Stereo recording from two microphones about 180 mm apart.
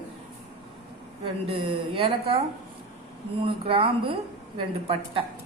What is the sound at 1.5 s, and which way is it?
Speech, 30° right (ahead or behind).